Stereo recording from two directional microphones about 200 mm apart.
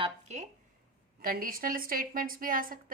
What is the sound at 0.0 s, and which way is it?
Speech, 35° right (ahead or behind).